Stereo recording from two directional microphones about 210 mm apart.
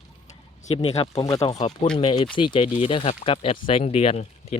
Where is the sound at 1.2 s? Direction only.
15° left (ahead or behind).